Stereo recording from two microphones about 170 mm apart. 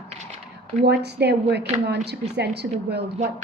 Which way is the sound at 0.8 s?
75° right (ahead or behind).